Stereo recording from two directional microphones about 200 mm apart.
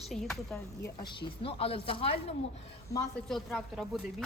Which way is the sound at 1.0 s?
25° left (ahead or behind).